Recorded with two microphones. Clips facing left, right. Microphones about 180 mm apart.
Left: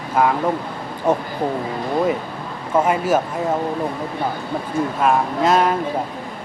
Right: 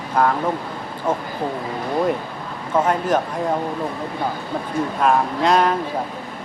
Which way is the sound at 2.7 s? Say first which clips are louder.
Left 1 dB; 10° left (ahead or behind).